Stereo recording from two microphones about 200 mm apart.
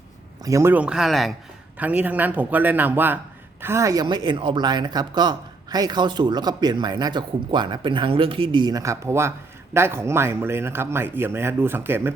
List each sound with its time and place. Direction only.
0.4 s speech: 15° right (ahead or behind)